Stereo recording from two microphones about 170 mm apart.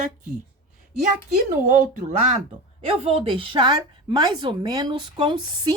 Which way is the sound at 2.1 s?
40° right (ahead or behind).